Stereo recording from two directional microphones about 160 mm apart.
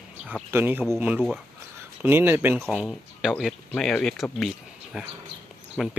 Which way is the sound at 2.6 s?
Centre (ahead or behind).